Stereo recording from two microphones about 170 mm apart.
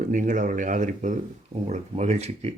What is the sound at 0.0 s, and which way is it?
Speech, 50° right (ahead or behind).